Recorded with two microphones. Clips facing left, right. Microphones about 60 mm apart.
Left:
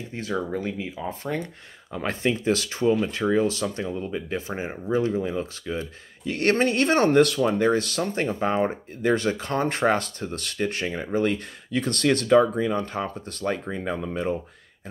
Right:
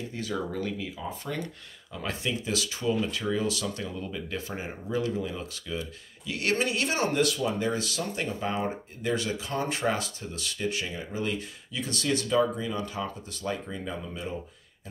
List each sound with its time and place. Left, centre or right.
0.1 s speech: left
1.0 s speech: left